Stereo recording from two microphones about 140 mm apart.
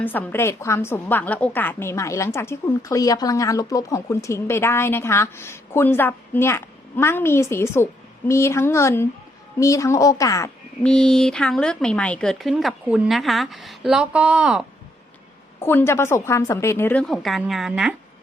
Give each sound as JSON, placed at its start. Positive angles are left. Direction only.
{"t": 0.0, "sound": "a woman's voice", "side_deg": 15}
{"t": 10.8, "sound": "speech", "side_deg": 5}
{"t": 15.6, "sound": "a woman's voice", "side_deg": 15}
{"t": 17.0, "sound": "speech", "side_deg": 0}